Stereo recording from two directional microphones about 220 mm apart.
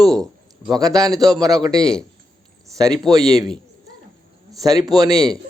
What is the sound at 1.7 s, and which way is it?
Speech, 5° left (ahead or behind).